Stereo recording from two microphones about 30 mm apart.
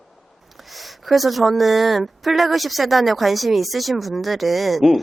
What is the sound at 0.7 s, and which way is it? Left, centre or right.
Speech, centre.